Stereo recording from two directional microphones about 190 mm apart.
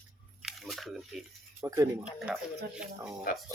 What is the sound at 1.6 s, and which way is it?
Speech, 15° right (ahead or behind).